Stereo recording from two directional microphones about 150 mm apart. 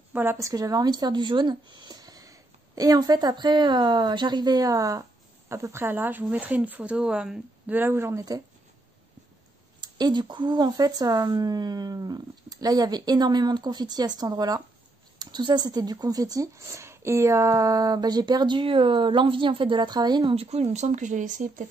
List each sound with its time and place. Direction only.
0.1 s a woman's voice: 15° right (ahead or behind)
9.8 s speech: 30° right (ahead or behind); by 21.6 s 60° right (ahead or behind)